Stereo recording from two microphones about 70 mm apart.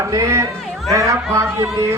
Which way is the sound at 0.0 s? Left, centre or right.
Right.